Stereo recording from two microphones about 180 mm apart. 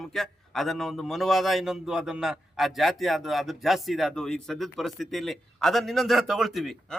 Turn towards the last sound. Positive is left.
turn(degrees=0)  # may be behind; listen again after turning